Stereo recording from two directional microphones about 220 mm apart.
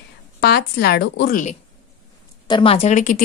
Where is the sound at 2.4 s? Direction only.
25° left (ahead or behind).